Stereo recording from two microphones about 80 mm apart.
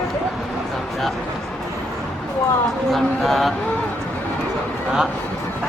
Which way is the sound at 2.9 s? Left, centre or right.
Centre.